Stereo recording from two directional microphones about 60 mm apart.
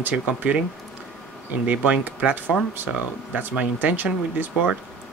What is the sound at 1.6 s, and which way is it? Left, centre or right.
Speech, right.